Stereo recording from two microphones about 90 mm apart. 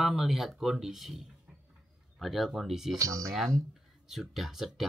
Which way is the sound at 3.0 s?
40° right (ahead or behind).